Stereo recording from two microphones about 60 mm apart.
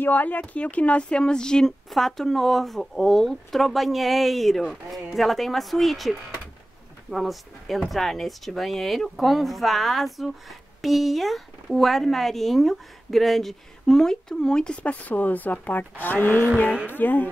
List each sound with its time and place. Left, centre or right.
0.0 s speech: left